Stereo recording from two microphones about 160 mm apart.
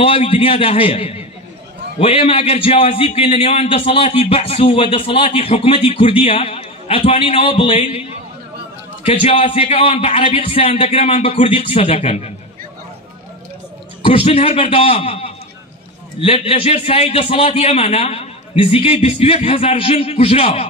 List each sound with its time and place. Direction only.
0.0 s speech: 35° left (ahead or behind)
9.0 s speech: 35° left (ahead or behind)
14.0 s speech: 35° left (ahead or behind)